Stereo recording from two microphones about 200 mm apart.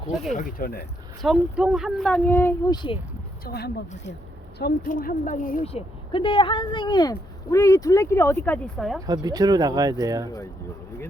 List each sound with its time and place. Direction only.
0.1 s speech: centre (ahead or behind)
0.3 s speech: 45° left (ahead or behind)
1.2 s speech: 5° right (ahead or behind)
2.7 s speech: 25° left (ahead or behind)
3.4 s speech: 50° left (ahead or behind)
5.6 s speech: 30° left (ahead or behind); by 9.0 s 5° left (ahead or behind)
9.0 s speech: 20° right (ahead or behind)